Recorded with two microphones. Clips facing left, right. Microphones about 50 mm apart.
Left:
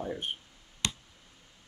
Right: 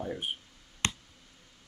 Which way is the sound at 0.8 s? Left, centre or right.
Right.